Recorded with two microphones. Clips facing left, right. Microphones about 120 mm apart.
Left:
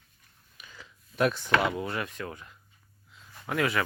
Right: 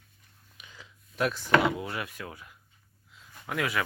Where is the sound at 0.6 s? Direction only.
15° right (ahead or behind).